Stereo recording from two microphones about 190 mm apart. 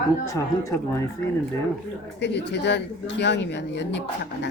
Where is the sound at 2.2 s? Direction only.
65° left (ahead or behind).